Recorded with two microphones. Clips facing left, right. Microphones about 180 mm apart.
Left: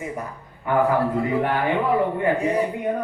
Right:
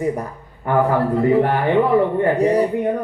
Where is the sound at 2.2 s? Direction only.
40° right (ahead or behind).